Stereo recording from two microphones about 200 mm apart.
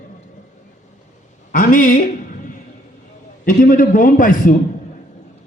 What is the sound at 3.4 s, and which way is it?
A man's voice, 45° left (ahead or behind).